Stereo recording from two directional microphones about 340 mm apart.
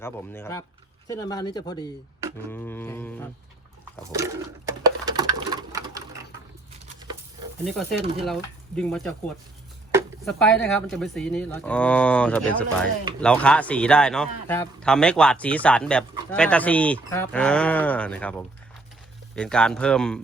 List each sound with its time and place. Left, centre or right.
0.0 s speech: centre
4.1 s sewing machine: centre
7.6 s a man's voice: centre